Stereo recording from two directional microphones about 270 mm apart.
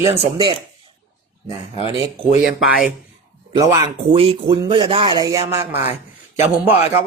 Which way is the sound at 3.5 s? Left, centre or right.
Centre.